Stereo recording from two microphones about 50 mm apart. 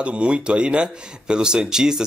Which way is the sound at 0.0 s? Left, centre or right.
Right.